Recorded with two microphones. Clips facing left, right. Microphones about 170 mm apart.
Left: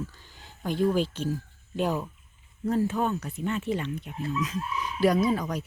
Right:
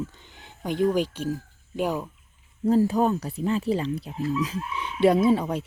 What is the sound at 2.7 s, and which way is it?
Speech, 35° right (ahead or behind).